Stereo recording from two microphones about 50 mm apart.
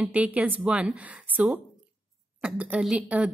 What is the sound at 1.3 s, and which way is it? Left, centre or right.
A woman's voice, right.